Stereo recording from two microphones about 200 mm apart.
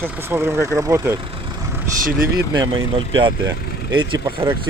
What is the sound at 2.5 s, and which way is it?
Speech, 25° right (ahead or behind).